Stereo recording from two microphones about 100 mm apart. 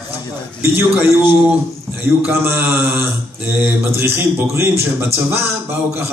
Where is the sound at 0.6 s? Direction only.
25° right (ahead or behind).